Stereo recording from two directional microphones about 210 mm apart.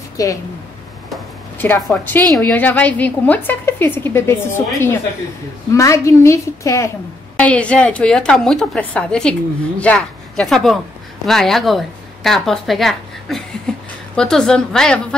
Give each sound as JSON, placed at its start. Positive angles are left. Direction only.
{"t": 0.2, "sound": "speech", "side_deg": 15}
{"t": 1.1, "sound": "a woman's voice", "side_deg": 5}